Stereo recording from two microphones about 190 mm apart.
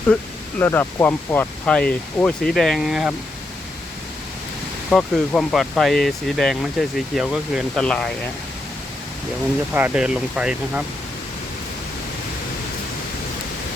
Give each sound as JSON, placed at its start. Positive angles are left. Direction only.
{"t": 0.6, "sound": "speech", "side_deg": 10}
{"t": 4.9, "sound": "speech", "side_deg": 5}
{"t": 9.7, "sound": "speech", "side_deg": -5}